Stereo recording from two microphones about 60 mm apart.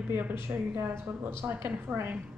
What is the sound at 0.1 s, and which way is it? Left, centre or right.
Speech, right.